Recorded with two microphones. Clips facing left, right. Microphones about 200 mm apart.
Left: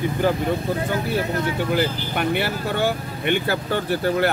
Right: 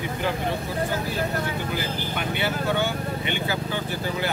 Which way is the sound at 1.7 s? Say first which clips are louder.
Left 6 dB; 55° left (ahead or behind).